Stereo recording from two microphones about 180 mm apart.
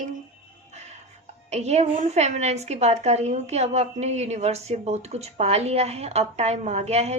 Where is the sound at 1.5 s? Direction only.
35° right (ahead or behind).